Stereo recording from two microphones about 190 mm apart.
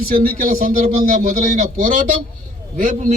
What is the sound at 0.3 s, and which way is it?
A man's voice, 50° right (ahead or behind).